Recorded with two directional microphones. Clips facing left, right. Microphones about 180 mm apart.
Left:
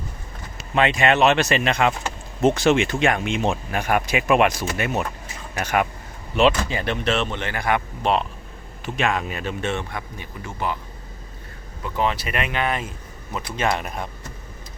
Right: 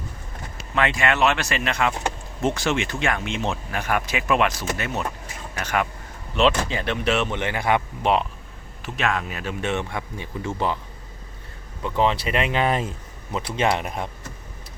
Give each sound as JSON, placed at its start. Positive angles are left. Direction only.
{"t": 0.8, "sound": "speech", "side_deg": 20}
{"t": 8.8, "sound": "speech", "side_deg": 0}
{"t": 11.8, "sound": "speech", "side_deg": -25}
{"t": 13.7, "sound": "speech", "side_deg": -20}